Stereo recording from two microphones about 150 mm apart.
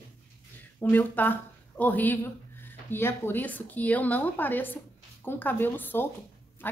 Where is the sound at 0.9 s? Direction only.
10° left (ahead or behind).